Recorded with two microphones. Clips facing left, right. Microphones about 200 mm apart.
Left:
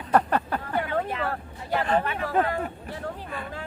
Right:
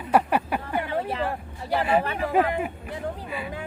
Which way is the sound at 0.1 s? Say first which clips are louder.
Right 1 dB; 10° right (ahead or behind).